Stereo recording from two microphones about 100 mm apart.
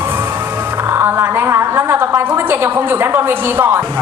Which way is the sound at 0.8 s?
25° right (ahead or behind).